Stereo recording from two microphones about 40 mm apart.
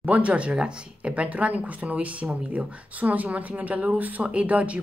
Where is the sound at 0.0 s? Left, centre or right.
Right.